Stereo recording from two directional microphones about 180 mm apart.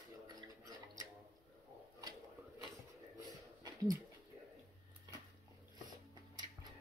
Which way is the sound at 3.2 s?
20° right (ahead or behind).